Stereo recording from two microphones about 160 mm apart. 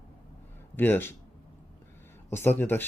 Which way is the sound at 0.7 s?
15° left (ahead or behind).